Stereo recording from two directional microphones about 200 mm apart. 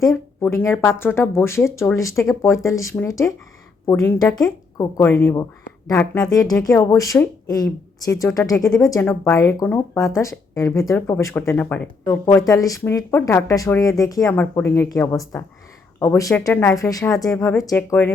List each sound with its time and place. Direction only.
0.0 s speech: 15° left (ahead or behind)